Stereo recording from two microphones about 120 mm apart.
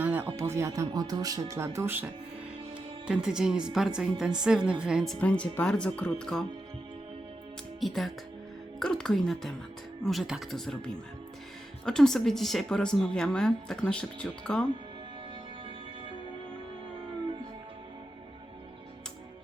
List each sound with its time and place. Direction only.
0.0 s speech: 15° right (ahead or behind)
0.9 s speech: 35° right (ahead or behind); by 2.0 s 20° right (ahead or behind)
3.1 s a woman's voice: 5° right (ahead or behind)
5.2 s speech: 10° left (ahead or behind)
7.8 s a woman's voice: centre (ahead or behind)